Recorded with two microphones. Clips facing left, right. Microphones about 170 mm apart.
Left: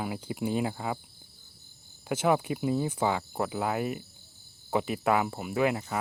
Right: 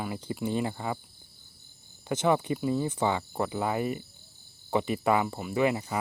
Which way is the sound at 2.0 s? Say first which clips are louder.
Even; 5° left (ahead or behind).